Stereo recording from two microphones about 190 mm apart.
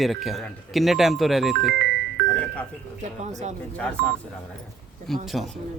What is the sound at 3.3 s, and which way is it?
Speech, 40° right (ahead or behind).